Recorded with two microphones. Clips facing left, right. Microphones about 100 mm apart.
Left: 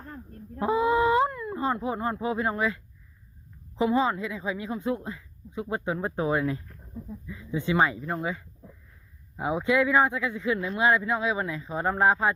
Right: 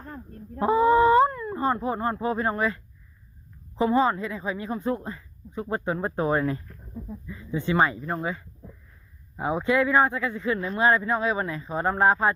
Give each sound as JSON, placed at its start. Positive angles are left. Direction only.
{"t": 0.6, "sound": "speech", "side_deg": -45}
{"t": 7.1, "sound": "speech", "side_deg": -35}